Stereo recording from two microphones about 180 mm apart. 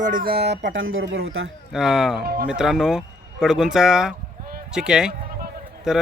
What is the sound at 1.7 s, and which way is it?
Speech, 5° right (ahead or behind).